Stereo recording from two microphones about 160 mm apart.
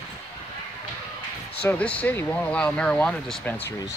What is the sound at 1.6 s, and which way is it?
Speech, 10° left (ahead or behind).